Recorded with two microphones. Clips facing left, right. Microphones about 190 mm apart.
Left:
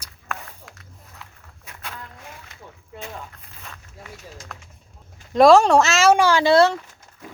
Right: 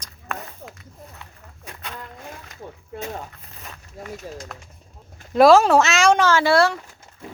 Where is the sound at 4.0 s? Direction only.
45° right (ahead or behind).